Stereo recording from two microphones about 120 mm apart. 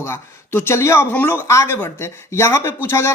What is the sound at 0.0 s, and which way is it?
A man's voice, 20° left (ahead or behind).